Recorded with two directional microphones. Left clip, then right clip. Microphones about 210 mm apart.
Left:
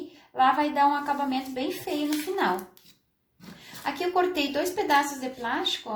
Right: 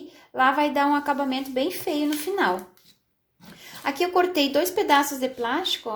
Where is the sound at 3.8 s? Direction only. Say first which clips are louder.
Right 3 dB; 45° right (ahead or behind).